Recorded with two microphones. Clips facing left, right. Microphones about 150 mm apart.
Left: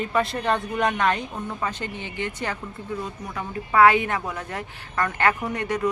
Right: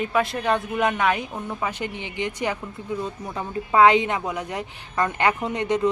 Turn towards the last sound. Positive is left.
turn(degrees=-20)  # may be behind; listen again after turning